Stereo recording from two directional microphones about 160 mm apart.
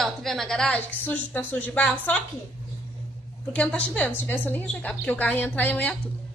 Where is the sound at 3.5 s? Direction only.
10° left (ahead or behind).